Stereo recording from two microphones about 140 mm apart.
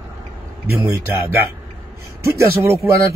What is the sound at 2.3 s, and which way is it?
Speech, 20° right (ahead or behind).